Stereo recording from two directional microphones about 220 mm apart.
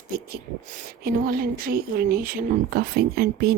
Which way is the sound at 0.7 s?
40° right (ahead or behind).